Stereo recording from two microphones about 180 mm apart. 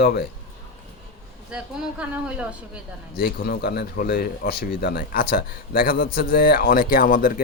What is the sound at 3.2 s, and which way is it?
Speech, 60° left (ahead or behind).